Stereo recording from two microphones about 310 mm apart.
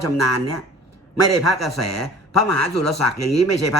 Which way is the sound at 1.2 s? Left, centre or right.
Left.